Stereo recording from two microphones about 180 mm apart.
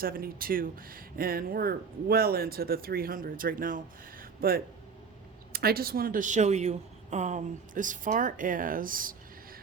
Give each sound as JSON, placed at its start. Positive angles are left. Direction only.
{"t": 0.0, "sound": "speech", "side_deg": -55}
{"t": 4.2, "sound": "a sound", "side_deg": -55}
{"t": 5.5, "sound": "speech", "side_deg": -60}